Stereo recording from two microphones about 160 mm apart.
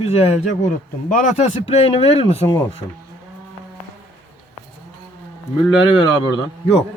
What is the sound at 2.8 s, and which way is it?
Speech, 20° left (ahead or behind).